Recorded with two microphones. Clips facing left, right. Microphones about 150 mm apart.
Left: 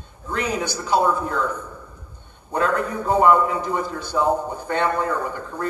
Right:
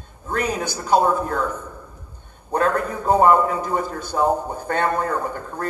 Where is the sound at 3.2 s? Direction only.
45° right (ahead or behind).